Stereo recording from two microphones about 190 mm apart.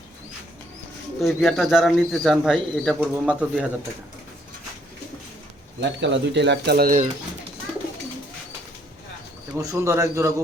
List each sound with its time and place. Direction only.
1.2 s speech: centre (ahead or behind)
5.8 s speech: 70° right (ahead or behind); by 7.1 s 45° right (ahead or behind)
9.6 s speech: 15° right (ahead or behind)